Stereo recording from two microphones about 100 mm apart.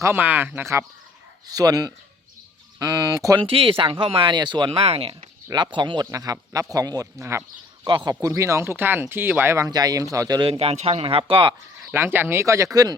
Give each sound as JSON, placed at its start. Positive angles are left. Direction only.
{"t": 0.0, "sound": "speech", "side_deg": -20}
{"t": 1.5, "sound": "a man's voice", "side_deg": -40}
{"t": 3.4, "sound": "speech", "side_deg": -70}
{"t": 4.3, "sound": "speech", "side_deg": -50}
{"t": 4.8, "sound": "speech", "side_deg": -80}
{"t": 5.5, "sound": "speech", "side_deg": -50}
{"t": 6.1, "sound": "a man's voice", "side_deg": -35}
{"t": 7.9, "sound": "speech", "side_deg": -55}
{"t": 8.2, "sound": "speech", "side_deg": -30}
{"t": 9.6, "sound": "a man's voice", "side_deg": -40}
{"t": 10.6, "sound": "speech", "side_deg": -90}
{"t": 11.9, "sound": "speech", "side_deg": -20}